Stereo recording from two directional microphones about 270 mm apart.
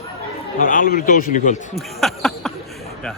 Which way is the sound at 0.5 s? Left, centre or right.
Left.